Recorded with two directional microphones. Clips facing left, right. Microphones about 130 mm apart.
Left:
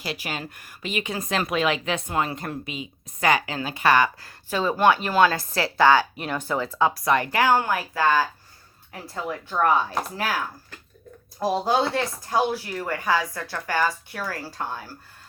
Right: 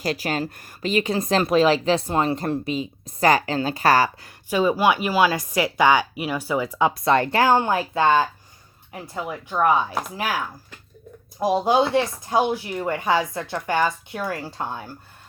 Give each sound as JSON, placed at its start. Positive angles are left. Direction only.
{"t": 0.0, "sound": "speech", "side_deg": -40}
{"t": 4.2, "sound": "speech", "side_deg": -15}
{"t": 11.3, "sound": "speech", "side_deg": -15}